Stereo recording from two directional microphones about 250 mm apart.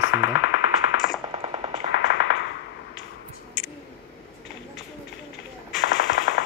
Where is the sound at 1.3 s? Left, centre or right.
Centre.